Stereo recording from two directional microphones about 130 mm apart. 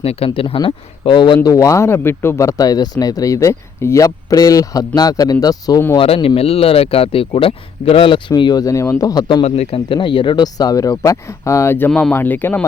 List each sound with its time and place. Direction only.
0.0 s speech: 50° left (ahead or behind)
0.3 s speech: 40° left (ahead or behind)
1.5 s speech: 25° left (ahead or behind)
6.0 s speech: 45° left (ahead or behind)
8.4 s speech: 30° left (ahead or behind)
9.2 s speech: 40° left (ahead or behind); by 11.9 s 20° left (ahead or behind)
11.9 s speech: 5° left (ahead or behind)
12.1 s speech: 15° left (ahead or behind)